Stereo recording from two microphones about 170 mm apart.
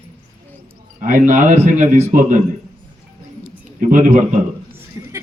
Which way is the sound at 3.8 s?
50° right (ahead or behind).